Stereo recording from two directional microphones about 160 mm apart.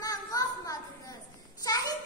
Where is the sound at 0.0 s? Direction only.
20° left (ahead or behind).